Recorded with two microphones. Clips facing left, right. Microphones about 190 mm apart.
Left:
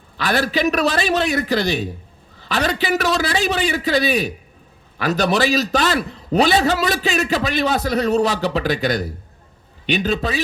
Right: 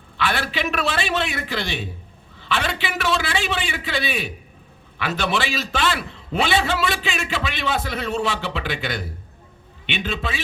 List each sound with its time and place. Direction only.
0.2 s a man's voice: 40° left (ahead or behind)